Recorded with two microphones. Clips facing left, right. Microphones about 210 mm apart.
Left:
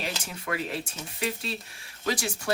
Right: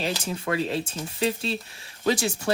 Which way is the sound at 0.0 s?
30° right (ahead or behind).